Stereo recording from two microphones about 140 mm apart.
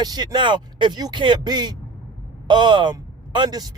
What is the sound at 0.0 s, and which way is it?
Speech, 30° right (ahead or behind).